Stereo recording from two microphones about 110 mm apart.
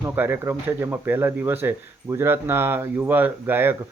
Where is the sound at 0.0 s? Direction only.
20° right (ahead or behind).